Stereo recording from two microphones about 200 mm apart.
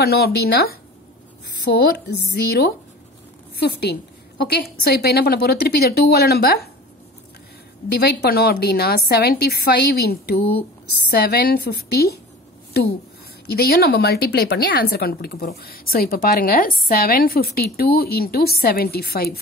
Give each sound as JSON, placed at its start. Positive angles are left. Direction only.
{"t": 0.0, "sound": "a woman's voice", "side_deg": 55}
{"t": 8.0, "sound": "a woman's voice", "side_deg": 50}
{"t": 13.6, "sound": "a woman's voice", "side_deg": 50}